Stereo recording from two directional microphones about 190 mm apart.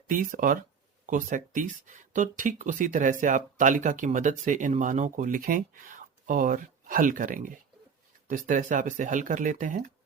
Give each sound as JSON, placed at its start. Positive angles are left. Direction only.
{"t": 0.1, "sound": "speech", "side_deg": -45}